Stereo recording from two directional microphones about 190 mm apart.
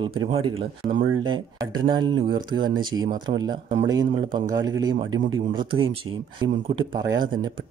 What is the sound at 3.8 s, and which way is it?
Speech, 20° right (ahead or behind).